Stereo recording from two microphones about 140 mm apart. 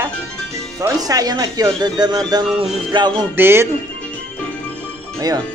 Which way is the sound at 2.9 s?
35° right (ahead or behind).